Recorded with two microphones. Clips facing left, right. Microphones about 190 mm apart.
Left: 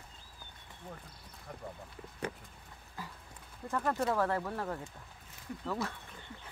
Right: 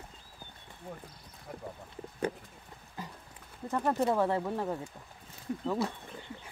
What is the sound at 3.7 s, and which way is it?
Speech, 20° right (ahead or behind).